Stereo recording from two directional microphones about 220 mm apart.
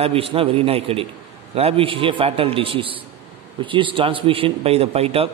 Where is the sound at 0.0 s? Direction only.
25° right (ahead or behind).